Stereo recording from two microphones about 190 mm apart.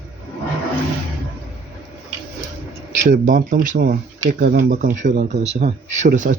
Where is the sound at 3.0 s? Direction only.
45° right (ahead or behind).